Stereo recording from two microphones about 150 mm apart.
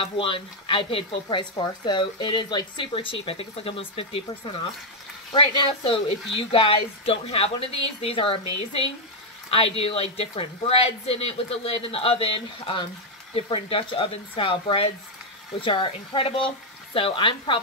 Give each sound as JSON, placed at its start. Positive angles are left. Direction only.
{"t": 0.0, "sound": "speech", "side_deg": 35}